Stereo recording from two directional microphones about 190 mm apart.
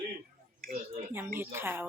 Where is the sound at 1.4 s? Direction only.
10° right (ahead or behind).